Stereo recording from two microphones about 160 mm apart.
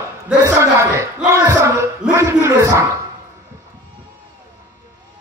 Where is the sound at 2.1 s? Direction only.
20° right (ahead or behind).